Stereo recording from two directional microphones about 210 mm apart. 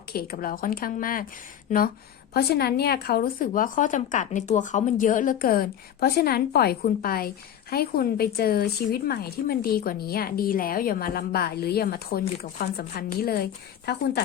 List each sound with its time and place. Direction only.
0.1 s a woman's voice: 45° left (ahead or behind)
2.3 s a woman's voice: 50° left (ahead or behind)